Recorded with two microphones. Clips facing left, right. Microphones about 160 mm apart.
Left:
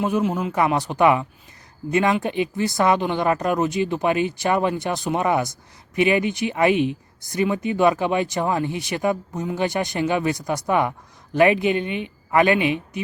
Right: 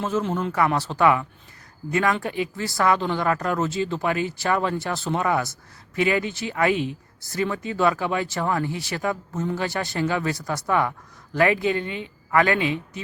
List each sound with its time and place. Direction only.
0.0 s speech: 10° left (ahead or behind)
0.5 s speech: 20° left (ahead or behind)